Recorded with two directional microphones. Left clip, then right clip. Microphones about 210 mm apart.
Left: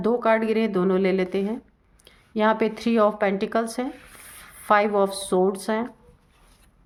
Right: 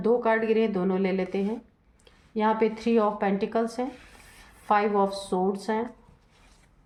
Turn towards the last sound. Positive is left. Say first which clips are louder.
# left 4 dB
turn(degrees=40)  # may be behind; listen again after turning